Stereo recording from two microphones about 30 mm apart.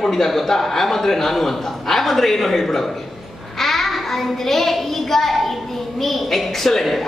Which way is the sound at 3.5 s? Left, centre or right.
Centre.